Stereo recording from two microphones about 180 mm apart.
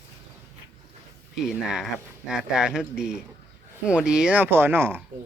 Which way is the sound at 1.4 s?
5° right (ahead or behind).